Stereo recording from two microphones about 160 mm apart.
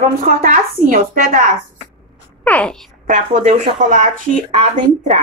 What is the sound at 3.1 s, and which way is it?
Speech, 50° right (ahead or behind).